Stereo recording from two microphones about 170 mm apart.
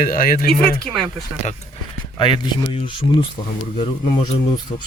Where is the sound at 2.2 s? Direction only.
30° left (ahead or behind).